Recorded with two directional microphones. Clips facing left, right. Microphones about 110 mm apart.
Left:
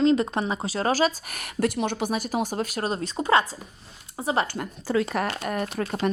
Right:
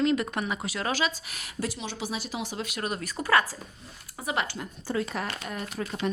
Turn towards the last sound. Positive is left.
turn(degrees=55)  # may be behind; listen again after turning